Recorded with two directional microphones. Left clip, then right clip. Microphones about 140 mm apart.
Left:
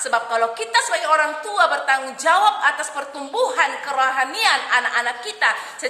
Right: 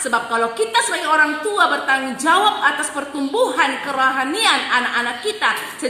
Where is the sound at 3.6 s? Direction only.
35° left (ahead or behind).